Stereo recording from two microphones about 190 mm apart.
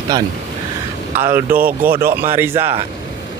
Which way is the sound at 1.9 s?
50° right (ahead or behind).